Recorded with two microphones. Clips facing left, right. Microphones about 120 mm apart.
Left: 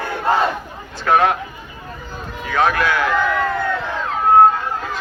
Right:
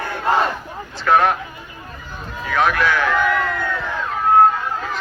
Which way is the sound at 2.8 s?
15° left (ahead or behind).